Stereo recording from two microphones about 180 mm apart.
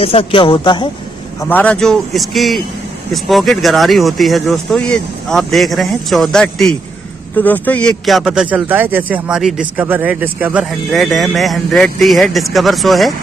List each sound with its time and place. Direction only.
0.0 s speech: 30° left (ahead or behind)
1.4 s speech: 10° left (ahead or behind)